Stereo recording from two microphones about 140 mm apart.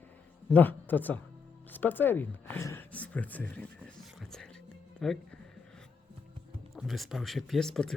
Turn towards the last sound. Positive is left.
turn(degrees=5)  # may be behind; listen again after turning